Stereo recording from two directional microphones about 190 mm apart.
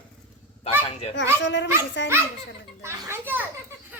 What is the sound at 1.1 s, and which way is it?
Speech, 70° left (ahead or behind).